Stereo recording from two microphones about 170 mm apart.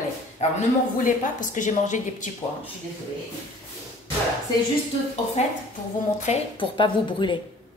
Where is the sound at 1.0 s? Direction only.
50° left (ahead or behind).